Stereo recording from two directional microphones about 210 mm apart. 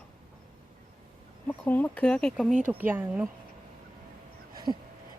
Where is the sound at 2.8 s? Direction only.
10° right (ahead or behind).